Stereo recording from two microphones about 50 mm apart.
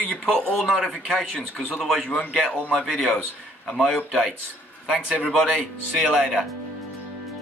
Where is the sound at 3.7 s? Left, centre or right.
Centre.